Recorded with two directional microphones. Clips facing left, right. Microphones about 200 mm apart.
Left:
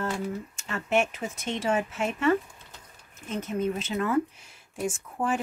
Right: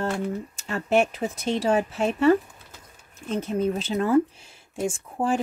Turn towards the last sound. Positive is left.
turn(degrees=-30)  # may be behind; listen again after turning